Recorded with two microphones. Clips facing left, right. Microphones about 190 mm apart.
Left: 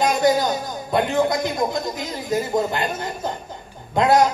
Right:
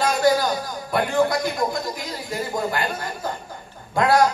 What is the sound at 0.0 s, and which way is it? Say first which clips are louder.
A man's voice: left 1 dB; 20° left (ahead or behind).